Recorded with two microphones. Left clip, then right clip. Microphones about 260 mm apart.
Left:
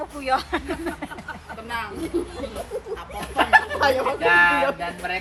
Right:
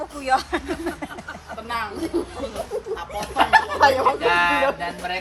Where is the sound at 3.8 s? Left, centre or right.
Right.